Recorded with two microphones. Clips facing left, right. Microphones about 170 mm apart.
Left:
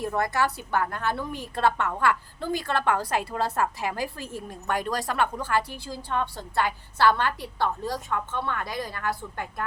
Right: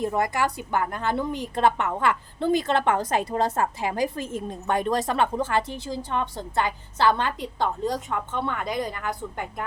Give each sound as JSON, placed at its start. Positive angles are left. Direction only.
{"t": 0.0, "sound": "a woman's voice", "side_deg": -15}